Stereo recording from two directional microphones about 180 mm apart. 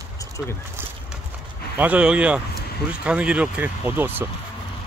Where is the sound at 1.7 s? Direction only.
10° right (ahead or behind).